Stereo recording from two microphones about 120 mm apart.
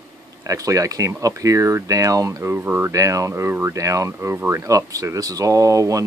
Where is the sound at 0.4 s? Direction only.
30° right (ahead or behind).